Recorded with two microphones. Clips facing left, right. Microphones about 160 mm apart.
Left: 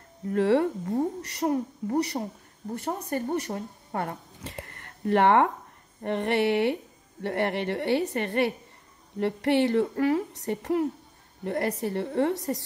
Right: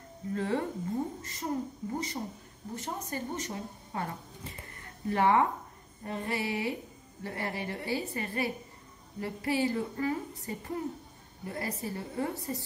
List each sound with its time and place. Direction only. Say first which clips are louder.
0.3 s a woman's voice: left 9 dB; 70° left (ahead or behind)